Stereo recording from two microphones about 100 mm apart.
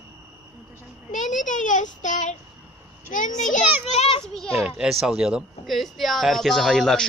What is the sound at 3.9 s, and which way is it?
Speech, 80° left.